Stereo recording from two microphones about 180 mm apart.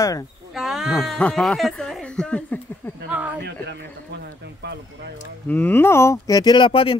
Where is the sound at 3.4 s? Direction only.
75° right (ahead or behind).